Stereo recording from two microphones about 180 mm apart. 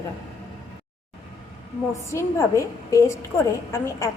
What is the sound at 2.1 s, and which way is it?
A woman's voice, 15° left (ahead or behind).